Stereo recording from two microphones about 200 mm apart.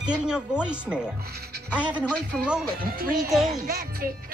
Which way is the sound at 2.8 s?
45° right (ahead or behind).